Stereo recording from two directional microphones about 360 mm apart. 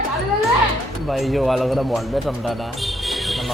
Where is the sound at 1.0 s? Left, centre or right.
Centre.